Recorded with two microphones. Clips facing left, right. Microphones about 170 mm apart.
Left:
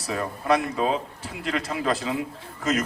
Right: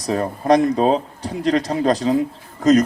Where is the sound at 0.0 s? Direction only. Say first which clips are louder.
Right 8 dB; 35° right (ahead or behind).